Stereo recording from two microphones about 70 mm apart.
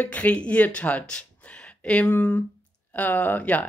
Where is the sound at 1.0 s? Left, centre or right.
Centre.